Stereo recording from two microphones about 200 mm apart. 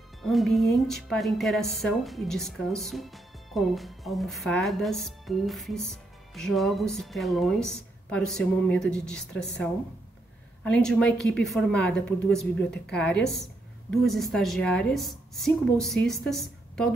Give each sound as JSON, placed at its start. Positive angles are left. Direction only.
{"t": 0.2, "sound": "speech", "side_deg": 0}
{"t": 10.6, "sound": "speech", "side_deg": 5}
{"t": 12.5, "sound": "a woman's voice", "side_deg": 55}
{"t": 12.9, "sound": "speech", "side_deg": 5}